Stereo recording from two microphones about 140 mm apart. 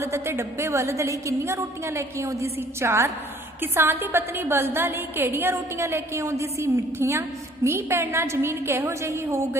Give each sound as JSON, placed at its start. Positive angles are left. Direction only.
{"t": 0.0, "sound": "a woman's voice", "side_deg": -20}